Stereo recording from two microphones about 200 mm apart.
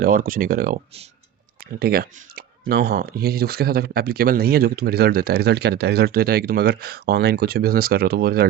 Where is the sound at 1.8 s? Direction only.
50° right (ahead or behind).